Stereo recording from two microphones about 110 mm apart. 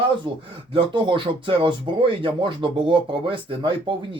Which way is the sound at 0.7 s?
45° right (ahead or behind).